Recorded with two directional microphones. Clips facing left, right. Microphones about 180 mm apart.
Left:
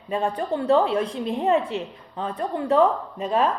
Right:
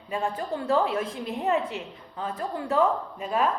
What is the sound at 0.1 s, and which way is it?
Speech, 30° left (ahead or behind).